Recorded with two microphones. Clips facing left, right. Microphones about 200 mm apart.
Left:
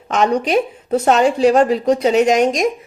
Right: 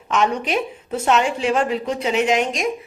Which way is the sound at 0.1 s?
40° left (ahead or behind).